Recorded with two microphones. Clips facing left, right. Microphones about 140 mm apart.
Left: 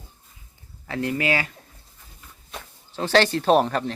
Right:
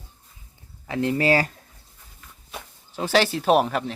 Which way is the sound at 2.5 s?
10° right (ahead or behind).